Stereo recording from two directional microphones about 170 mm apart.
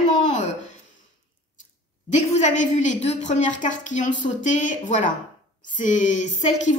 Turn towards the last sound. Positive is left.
turn(degrees=45)  # may be behind; listen again after turning